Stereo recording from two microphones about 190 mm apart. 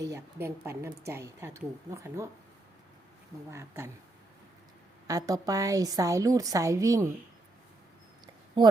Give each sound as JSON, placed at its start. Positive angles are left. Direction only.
{"t": 0.1, "sound": "a woman's voice", "side_deg": -10}
{"t": 3.5, "sound": "a woman's voice", "side_deg": -15}
{"t": 5.0, "sound": "a woman's voice", "side_deg": -20}